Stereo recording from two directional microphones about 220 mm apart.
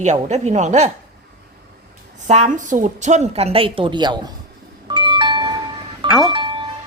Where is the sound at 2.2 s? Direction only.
35° right (ahead or behind).